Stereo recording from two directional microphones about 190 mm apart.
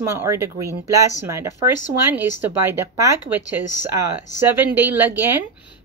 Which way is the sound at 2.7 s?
10° right (ahead or behind).